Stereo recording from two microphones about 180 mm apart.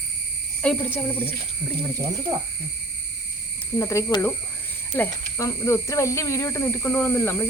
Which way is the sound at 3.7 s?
20° left (ahead or behind).